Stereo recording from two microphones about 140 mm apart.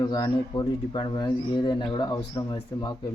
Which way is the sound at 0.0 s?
30° left (ahead or behind).